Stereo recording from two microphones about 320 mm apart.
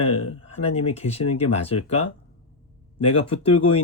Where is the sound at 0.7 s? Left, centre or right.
Centre.